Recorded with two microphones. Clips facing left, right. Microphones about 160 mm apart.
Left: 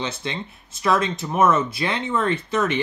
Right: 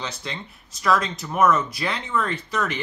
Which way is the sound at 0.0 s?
25° left (ahead or behind).